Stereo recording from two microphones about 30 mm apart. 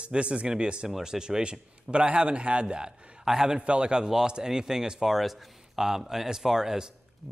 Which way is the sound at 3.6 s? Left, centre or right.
Right.